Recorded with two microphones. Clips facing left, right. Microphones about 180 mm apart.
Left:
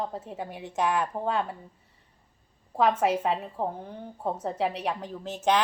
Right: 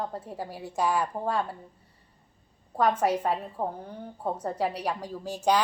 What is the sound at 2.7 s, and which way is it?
A woman's voice, 5° left (ahead or behind).